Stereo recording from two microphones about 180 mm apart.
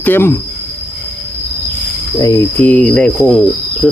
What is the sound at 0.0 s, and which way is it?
Speech, 10° left (ahead or behind).